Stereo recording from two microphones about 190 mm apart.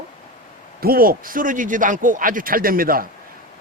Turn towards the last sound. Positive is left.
turn(degrees=-50)  # may be behind; listen again after turning